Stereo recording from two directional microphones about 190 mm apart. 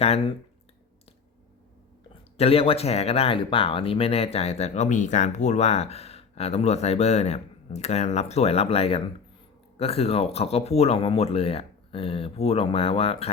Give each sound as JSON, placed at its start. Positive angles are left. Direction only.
{"t": 0.0, "sound": "speech", "side_deg": 35}
{"t": 2.4, "sound": "speech", "side_deg": 30}